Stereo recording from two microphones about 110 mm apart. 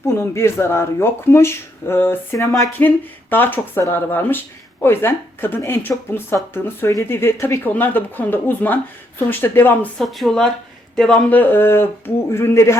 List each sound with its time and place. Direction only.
0.0 s speech: 25° left (ahead or behind)
10.0 s speech: centre (ahead or behind); by 12.7 s 25° left (ahead or behind)